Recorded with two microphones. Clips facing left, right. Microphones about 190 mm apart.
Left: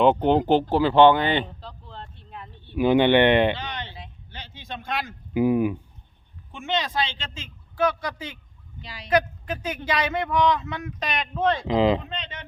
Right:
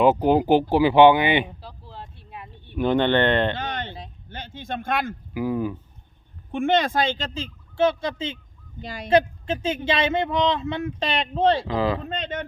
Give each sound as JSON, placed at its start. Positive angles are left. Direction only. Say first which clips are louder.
{"t": 0.0, "sound": "a sound", "louder": "right 1 dB", "side_deg": -5}
{"t": 2.7, "sound": "speech", "louder": "left 2 dB", "side_deg": 5}
{"t": 3.5, "sound": "a sound", "louder": "right 3 dB", "side_deg": -50}
{"t": 5.3, "sound": "speech", "louder": "left 6 dB", "side_deg": 20}
{"t": 6.5, "sound": "speech", "louder": "right 7 dB", "side_deg": -55}
{"t": 8.8, "sound": "speech", "louder": "right 8 dB", "side_deg": -50}
{"t": 9.0, "sound": "speech", "louder": "right 3 dB", "side_deg": -25}
{"t": 11.7, "sound": "speech", "louder": "left 3 dB", "side_deg": 20}
{"t": 12.0, "sound": "speech", "louder": "right 7 dB", "side_deg": -45}